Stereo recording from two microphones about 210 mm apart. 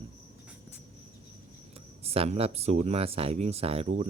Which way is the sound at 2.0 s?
30° right (ahead or behind).